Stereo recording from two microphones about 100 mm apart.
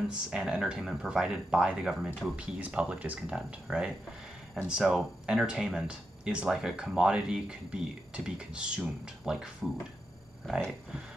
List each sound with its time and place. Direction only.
0.1 s speech: 10° right (ahead or behind)